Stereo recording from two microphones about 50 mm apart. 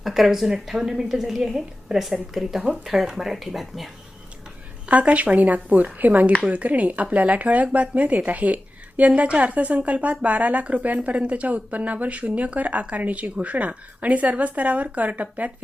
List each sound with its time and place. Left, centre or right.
0.0 s a woman's voice: centre
4.9 s speech: right